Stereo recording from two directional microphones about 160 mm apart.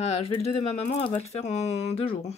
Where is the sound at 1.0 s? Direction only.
45° left (ahead or behind).